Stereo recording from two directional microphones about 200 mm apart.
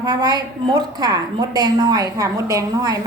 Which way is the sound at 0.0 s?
20° right (ahead or behind).